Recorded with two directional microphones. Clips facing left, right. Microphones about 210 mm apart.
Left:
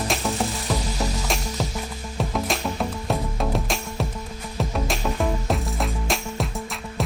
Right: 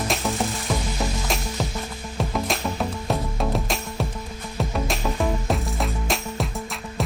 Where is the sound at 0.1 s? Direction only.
Centre (ahead or behind).